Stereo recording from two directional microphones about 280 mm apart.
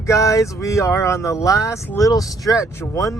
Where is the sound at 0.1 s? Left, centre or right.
Centre.